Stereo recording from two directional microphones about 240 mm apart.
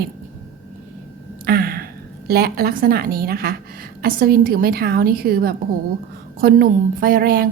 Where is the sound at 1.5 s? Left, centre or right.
Right.